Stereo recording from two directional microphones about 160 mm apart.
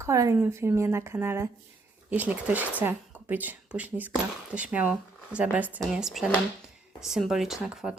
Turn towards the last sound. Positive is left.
turn(degrees=-5)  # may be behind; listen again after turning